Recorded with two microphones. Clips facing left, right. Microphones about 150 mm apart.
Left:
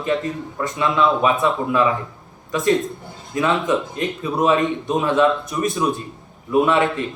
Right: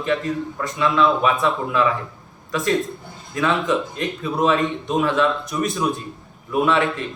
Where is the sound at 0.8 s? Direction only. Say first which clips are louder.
Even; 20° left (ahead or behind).